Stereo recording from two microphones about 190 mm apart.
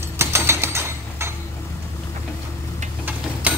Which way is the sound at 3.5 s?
10° right (ahead or behind).